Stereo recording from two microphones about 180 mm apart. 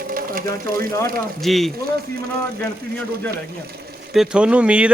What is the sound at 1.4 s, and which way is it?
Speech, centre (ahead or behind).